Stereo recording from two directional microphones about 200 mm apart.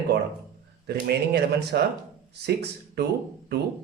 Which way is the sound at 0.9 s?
55° right (ahead or behind).